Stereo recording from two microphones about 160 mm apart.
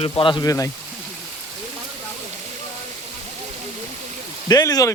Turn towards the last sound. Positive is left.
turn(degrees=20)  # may be behind; listen again after turning